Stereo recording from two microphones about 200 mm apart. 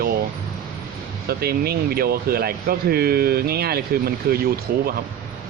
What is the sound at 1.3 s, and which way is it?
Speech, 50° right (ahead or behind).